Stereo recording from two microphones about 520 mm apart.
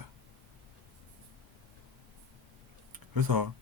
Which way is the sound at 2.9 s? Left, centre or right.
Right.